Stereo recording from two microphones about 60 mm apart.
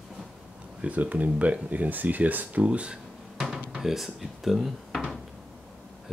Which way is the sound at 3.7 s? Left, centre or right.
Centre.